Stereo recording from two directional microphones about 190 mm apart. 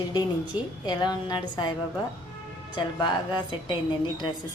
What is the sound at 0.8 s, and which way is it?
Speech, 20° left (ahead or behind).